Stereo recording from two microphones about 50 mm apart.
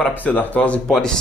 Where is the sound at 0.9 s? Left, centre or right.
Centre.